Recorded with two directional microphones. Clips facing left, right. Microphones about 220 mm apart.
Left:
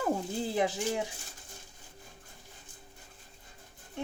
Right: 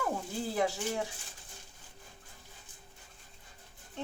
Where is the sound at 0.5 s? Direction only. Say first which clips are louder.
Left 1 dB; 20° left (ahead or behind).